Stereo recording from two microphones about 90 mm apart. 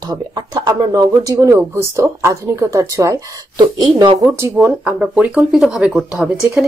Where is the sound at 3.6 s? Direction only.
60° right (ahead or behind).